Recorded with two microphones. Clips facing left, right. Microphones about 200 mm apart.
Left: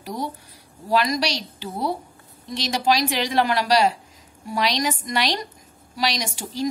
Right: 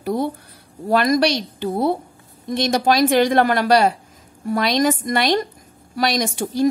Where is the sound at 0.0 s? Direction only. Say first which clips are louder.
Right 8 dB; 55° right (ahead or behind).